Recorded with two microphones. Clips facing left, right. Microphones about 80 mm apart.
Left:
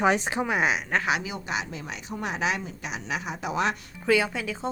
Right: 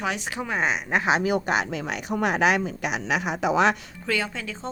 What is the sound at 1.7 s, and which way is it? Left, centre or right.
Speech, right.